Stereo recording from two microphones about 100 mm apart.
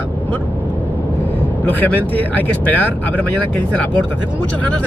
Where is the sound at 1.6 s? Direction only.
15° left (ahead or behind).